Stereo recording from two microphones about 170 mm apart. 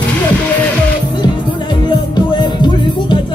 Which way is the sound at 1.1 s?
25° left (ahead or behind).